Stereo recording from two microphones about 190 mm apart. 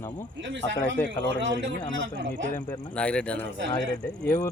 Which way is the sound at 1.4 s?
75° right (ahead or behind).